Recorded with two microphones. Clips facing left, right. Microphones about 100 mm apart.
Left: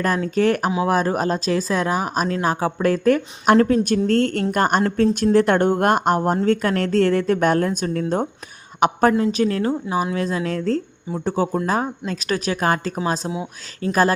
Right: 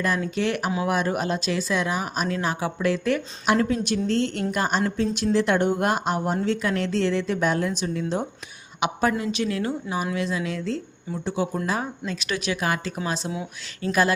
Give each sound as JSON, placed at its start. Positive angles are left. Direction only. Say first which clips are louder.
{"t": 0.0, "sound": "speech", "louder": "left 5 dB", "side_deg": 45}
{"t": 9.1, "sound": "speech", "louder": "left 6 dB", "side_deg": 40}